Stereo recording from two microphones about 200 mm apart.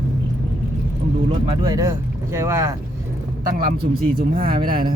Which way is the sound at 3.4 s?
50° right (ahead or behind).